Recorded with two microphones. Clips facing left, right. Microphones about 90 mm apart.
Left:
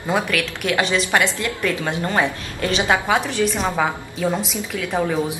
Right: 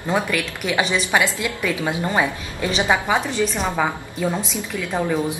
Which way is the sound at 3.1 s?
Centre (ahead or behind).